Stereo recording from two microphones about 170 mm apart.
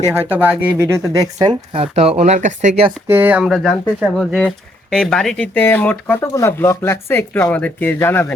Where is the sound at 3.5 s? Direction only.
5° left (ahead or behind).